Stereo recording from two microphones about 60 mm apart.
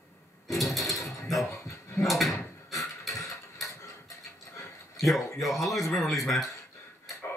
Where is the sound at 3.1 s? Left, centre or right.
Left.